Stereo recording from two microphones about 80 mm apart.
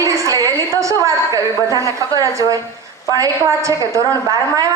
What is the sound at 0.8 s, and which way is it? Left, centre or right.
A woman's voice, right.